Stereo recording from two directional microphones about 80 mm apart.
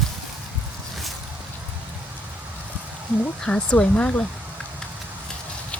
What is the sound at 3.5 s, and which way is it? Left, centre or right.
Speech, centre.